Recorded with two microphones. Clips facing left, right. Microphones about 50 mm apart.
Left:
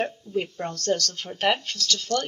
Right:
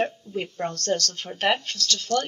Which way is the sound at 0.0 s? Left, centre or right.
Centre.